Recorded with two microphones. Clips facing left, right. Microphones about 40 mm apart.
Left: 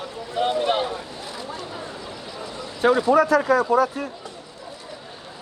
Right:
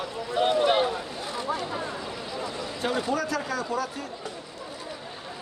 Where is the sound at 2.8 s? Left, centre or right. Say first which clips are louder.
Left 11 dB; left.